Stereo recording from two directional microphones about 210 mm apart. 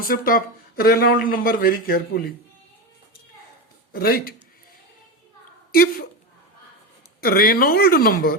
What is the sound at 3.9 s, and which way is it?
Speech, 45° left (ahead or behind).